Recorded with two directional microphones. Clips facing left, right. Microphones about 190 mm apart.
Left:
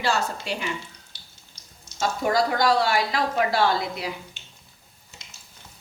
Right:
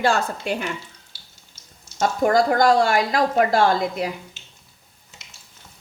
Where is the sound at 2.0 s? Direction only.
50° right (ahead or behind).